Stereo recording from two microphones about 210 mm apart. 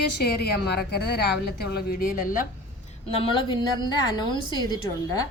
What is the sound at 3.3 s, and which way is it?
A woman's voice, 20° left (ahead or behind).